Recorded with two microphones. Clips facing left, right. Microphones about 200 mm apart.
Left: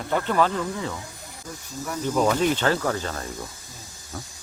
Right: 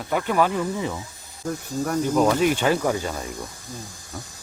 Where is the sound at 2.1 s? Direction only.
10° right (ahead or behind).